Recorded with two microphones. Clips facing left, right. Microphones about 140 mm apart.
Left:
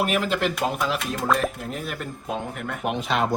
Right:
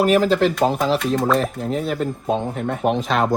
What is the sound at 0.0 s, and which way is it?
Speech, 35° right (ahead or behind).